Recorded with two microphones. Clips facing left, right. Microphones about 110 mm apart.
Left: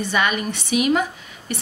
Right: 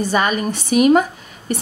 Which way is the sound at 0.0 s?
40° right (ahead or behind).